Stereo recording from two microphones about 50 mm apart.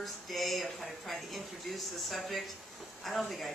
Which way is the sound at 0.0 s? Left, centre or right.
Centre.